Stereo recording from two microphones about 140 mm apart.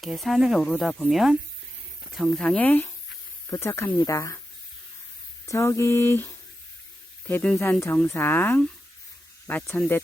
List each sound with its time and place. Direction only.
0.0 s speech: centre (ahead or behind); by 4.4 s 20° left (ahead or behind)
5.5 s speech: 20° left (ahead or behind)